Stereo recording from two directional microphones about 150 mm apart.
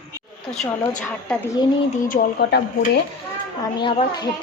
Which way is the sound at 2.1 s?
75° left (ahead or behind).